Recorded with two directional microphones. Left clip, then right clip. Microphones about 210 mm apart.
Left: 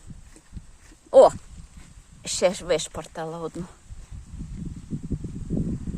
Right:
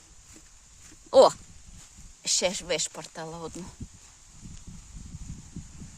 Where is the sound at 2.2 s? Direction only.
Centre (ahead or behind).